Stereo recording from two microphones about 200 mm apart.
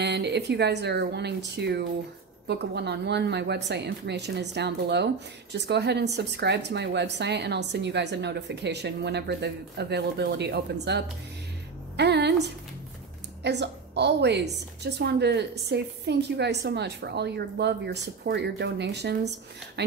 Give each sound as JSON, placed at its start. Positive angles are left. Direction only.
{"t": 0.0, "sound": "a woman's voice", "side_deg": -55}